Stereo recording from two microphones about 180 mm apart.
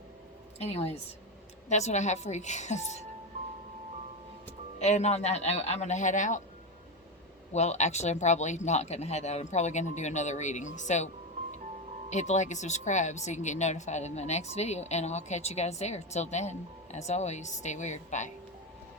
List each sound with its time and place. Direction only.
0.6 s speech: 35° left (ahead or behind)
4.8 s speech: 40° left (ahead or behind)
7.5 s speech: 40° left (ahead or behind)
12.1 s speech: 40° left (ahead or behind)